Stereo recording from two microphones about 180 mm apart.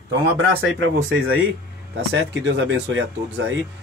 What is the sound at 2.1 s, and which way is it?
Speech, 80° right.